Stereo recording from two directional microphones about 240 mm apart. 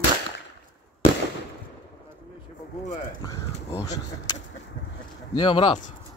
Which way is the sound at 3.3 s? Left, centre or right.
Centre.